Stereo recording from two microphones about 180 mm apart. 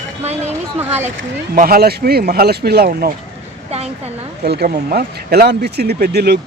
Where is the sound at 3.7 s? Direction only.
35° right (ahead or behind).